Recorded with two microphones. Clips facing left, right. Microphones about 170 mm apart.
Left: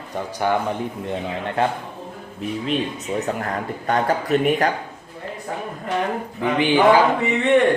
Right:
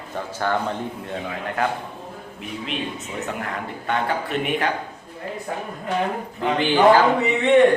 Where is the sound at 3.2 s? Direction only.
40° left (ahead or behind).